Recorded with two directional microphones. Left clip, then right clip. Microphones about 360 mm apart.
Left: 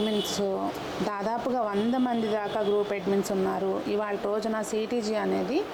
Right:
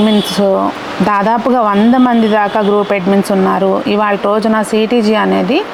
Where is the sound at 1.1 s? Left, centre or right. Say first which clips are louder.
Right 19 dB; right.